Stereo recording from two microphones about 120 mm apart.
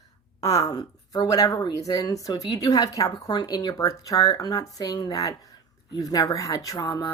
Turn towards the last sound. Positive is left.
turn(degrees=30)  # may be behind; listen again after turning